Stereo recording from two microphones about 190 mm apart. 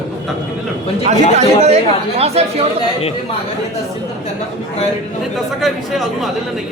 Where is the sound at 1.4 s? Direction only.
35° right (ahead or behind).